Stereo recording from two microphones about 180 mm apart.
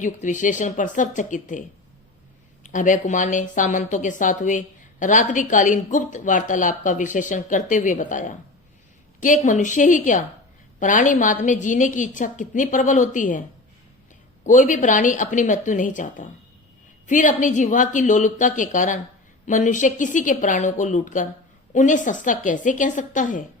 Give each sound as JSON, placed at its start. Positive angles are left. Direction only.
{"t": 0.0, "sound": "a woman's voice", "side_deg": 45}
{"t": 2.7, "sound": "a woman's voice", "side_deg": 45}
{"t": 14.4, "sound": "a woman's voice", "side_deg": 45}